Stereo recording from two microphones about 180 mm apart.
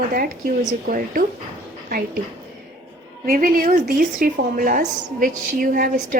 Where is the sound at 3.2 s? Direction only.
50° right (ahead or behind).